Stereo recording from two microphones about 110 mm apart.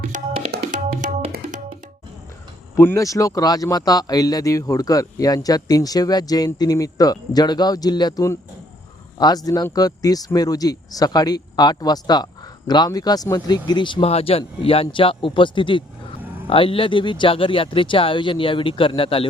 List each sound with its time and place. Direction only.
2.7 s speech: 25° left (ahead or behind)
13.7 s speech: 45° left (ahead or behind)
14.1 s speech: 65° left (ahead or behind)